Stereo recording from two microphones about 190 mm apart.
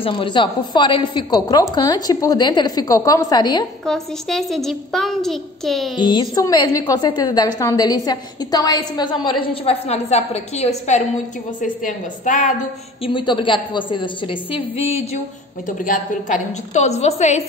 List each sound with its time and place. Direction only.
0.0 s a woman's voice: 25° left (ahead or behind)
3.8 s a woman's voice: centre (ahead or behind)
5.9 s a woman's voice: 25° left (ahead or behind); by 12.5 s 40° left (ahead or behind)
13.0 s a woman's voice: 25° left (ahead or behind)
15.6 s a woman's voice: 45° left (ahead or behind)